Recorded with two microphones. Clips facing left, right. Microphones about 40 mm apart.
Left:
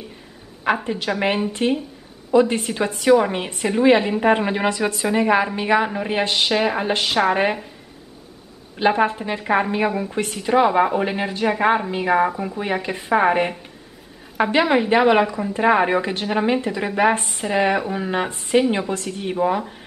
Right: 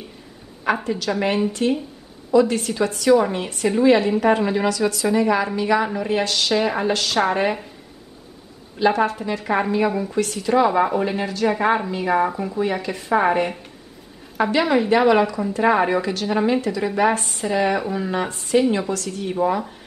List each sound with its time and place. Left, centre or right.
0.8 s a woman's voice: left
8.7 s speech: left
11.5 s a woman's voice: centre
19.3 s a woman's voice: centre